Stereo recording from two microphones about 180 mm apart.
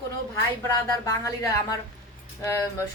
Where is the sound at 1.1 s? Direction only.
15° left (ahead or behind).